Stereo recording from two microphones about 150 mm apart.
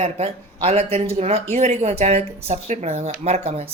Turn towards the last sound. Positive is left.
turn(degrees=-45)  # may be behind; listen again after turning